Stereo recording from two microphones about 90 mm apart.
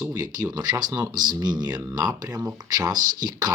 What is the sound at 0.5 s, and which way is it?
Speech, 50° right (ahead or behind).